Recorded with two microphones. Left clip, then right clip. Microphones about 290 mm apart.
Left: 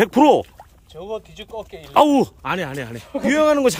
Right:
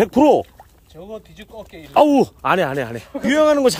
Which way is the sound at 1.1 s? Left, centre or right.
Left.